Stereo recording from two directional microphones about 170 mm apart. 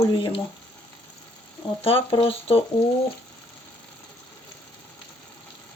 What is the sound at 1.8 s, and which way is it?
Speech, 35° left (ahead or behind).